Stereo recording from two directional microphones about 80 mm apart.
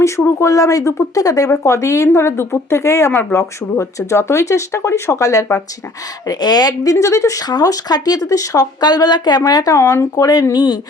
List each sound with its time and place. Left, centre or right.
0.0 s speech: left
3.1 s speech: left
3.3 s speech: left
6.2 s speech: left
6.9 s speech: left
9.4 s speech: left
10.5 s speech: left